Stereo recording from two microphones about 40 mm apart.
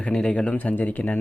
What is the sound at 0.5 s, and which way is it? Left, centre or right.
Speech, left.